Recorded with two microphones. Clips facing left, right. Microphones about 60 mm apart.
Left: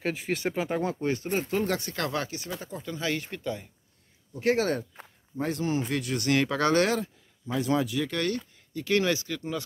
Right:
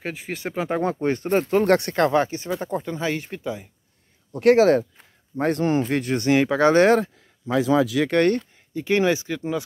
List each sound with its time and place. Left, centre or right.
0.0 s speech: centre
1.0 s speech: right
1.6 s speech: right
2.0 s speech: right
3.0 s speech: right
4.3 s speech: right
5.4 s speech: right
7.0 s speech: right
8.1 s speech: right
8.7 s speech: right